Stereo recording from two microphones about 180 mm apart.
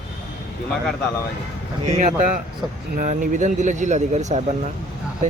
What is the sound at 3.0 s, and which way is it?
Speech, 45° right (ahead or behind).